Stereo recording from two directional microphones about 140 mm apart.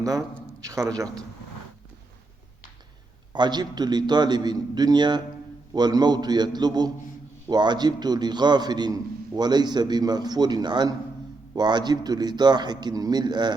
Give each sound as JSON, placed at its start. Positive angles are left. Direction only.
{"t": 0.0, "sound": "speech", "side_deg": -25}
{"t": 3.3, "sound": "a man's voice", "side_deg": -30}